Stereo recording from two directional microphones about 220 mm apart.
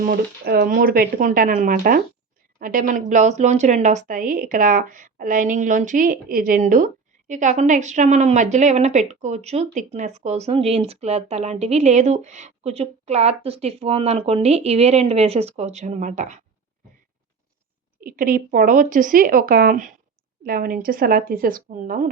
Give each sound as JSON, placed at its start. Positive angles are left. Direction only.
{"t": 0.0, "sound": "a woman's voice", "side_deg": -45}
{"t": 18.0, "sound": "a woman's voice", "side_deg": -40}